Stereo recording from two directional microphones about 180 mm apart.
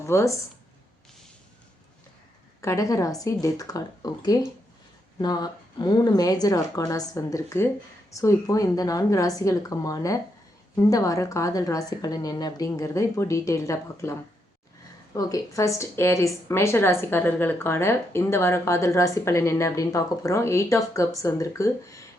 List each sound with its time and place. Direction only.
0.0 s speech: 15° left (ahead or behind)
2.6 s a woman's voice: 15° left (ahead or behind)